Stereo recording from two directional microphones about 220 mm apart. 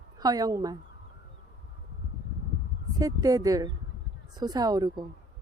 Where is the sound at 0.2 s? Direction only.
15° right (ahead or behind).